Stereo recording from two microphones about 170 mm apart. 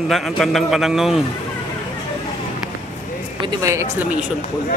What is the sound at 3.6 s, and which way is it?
Speech, 15° right (ahead or behind).